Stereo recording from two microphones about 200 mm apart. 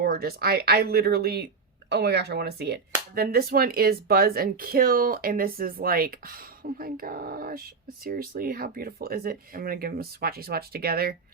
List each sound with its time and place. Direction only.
0.0 s speech: 50° right (ahead or behind)